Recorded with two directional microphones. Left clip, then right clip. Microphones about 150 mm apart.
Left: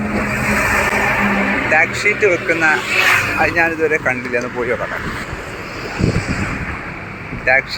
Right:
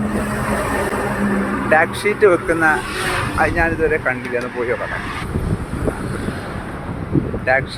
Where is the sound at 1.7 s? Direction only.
30° right (ahead or behind).